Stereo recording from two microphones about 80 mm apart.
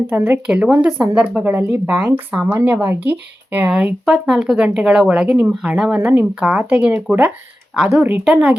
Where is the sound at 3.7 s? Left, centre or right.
Centre.